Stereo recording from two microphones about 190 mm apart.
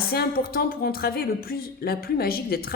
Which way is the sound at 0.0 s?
55° left (ahead or behind).